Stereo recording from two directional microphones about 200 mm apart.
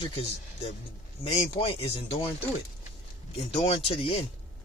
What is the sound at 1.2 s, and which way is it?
Speech, 30° left (ahead or behind).